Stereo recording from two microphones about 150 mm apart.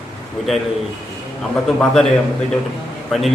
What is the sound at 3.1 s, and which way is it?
Speech, centre (ahead or behind).